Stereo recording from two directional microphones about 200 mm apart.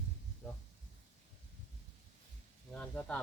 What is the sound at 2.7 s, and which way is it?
Speech, 5° left (ahead or behind).